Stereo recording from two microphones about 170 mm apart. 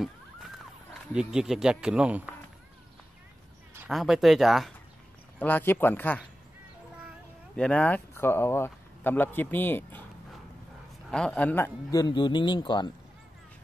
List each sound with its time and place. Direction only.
1.1 s speech: 5° right (ahead or behind)
3.8 s speech: centre (ahead or behind)
5.4 s speech: 10° left (ahead or behind)
7.5 s speech: 5° left (ahead or behind)
11.1 s a man's voice: 5° left (ahead or behind); by 12.9 s 25° left (ahead or behind)